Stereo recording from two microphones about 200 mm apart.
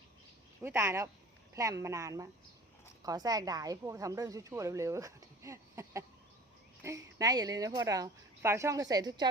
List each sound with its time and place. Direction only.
0.6 s a woman's voice: 15° right (ahead or behind)